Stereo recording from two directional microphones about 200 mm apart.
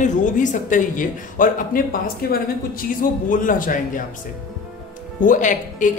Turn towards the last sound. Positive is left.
turn(degrees=40)  # may be behind; listen again after turning